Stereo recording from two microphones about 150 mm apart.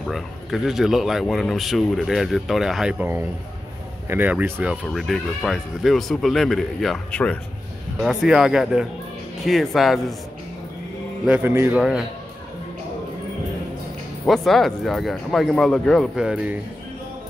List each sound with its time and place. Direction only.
0.0 s speech: centre (ahead or behind)
11.2 s speech: 10° right (ahead or behind)
14.2 s speech: centre (ahead or behind)